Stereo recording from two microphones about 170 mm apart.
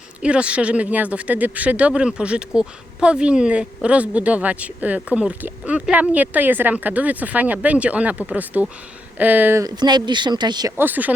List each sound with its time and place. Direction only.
0.2 s speech: 5° right (ahead or behind); by 10.7 s 25° right (ahead or behind)
10.8 s speech: 10° right (ahead or behind)